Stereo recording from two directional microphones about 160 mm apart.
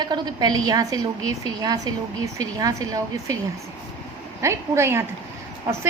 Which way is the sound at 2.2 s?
20° right (ahead or behind).